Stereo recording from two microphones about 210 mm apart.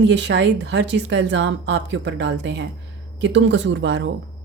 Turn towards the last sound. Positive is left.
turn(degrees=-60)  # may be behind; listen again after turning